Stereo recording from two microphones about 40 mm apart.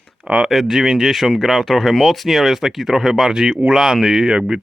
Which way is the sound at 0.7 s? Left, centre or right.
Centre.